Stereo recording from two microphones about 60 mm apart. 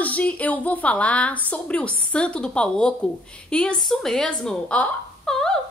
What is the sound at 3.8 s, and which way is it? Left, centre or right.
A woman's voice, centre.